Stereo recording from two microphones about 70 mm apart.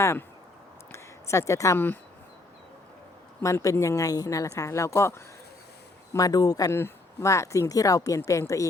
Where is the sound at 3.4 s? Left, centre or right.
Left.